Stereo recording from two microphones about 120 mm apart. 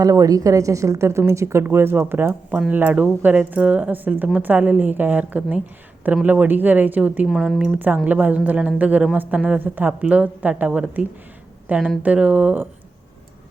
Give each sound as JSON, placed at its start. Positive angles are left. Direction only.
{"t": 0.0, "sound": "a woman's voice", "side_deg": -30}
{"t": 7.3, "sound": "a woman's voice", "side_deg": 0}